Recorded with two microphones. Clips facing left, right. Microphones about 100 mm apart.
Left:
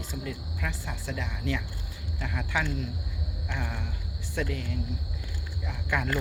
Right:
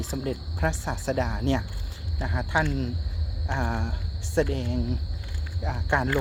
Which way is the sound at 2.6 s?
55° right (ahead or behind).